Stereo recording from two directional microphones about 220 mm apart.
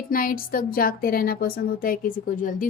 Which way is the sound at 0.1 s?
40° left (ahead or behind).